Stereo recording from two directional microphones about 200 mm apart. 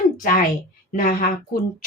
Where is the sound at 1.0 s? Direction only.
45° left (ahead or behind).